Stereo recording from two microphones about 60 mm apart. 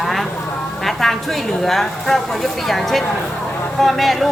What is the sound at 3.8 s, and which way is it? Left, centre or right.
Speech, centre.